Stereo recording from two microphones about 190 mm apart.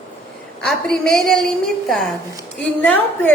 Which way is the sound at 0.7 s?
Centre (ahead or behind).